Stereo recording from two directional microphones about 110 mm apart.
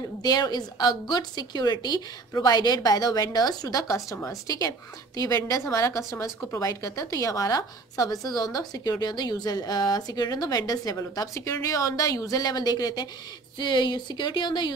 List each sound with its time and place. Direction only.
0.2 s a woman's voice: 35° left (ahead or behind)